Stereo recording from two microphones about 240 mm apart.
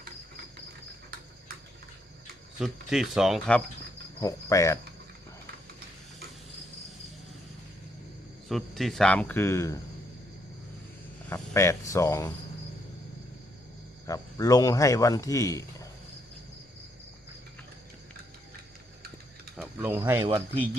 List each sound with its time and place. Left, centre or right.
2.6 s speech: centre
4.2 s speech: centre
8.4 s speech: centre
11.3 s speech: centre
14.1 s speech: centre
19.5 s mechanisms: centre
19.9 s speech: centre